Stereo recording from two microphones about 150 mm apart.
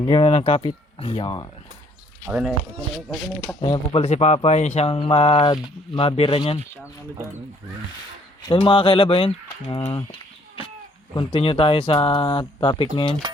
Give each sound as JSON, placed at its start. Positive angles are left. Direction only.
{"t": 0.0, "sound": "speech", "side_deg": 35}
{"t": 2.2, "sound": "speech", "side_deg": -5}
{"t": 3.6, "sound": "speech", "side_deg": 40}
{"t": 8.5, "sound": "speech", "side_deg": 35}